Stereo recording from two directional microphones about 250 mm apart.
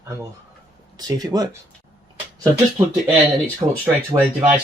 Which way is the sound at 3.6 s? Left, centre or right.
Right.